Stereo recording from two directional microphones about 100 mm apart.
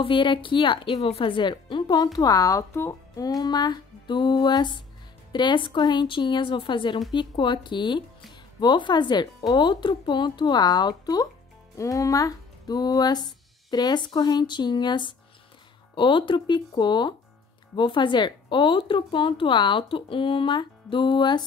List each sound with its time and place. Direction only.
0.0 s speech: 60° left (ahead or behind)
2.1 s speech: 40° left (ahead or behind)